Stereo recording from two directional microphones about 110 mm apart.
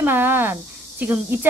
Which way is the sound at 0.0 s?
20° right (ahead or behind).